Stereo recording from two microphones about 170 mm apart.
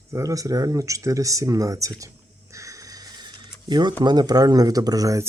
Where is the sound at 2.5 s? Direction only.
20° right (ahead or behind).